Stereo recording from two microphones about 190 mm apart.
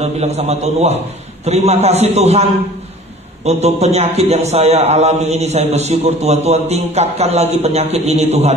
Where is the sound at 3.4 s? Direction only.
35° right (ahead or behind).